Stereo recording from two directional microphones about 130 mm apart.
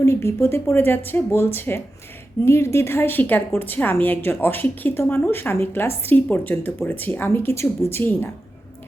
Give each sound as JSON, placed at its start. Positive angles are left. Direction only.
{"t": 0.0, "sound": "a woman's voice", "side_deg": 20}